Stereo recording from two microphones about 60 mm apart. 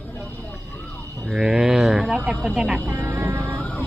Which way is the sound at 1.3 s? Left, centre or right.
Centre.